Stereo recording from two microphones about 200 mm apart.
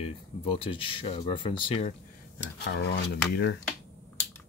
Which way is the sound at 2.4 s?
60° left (ahead or behind).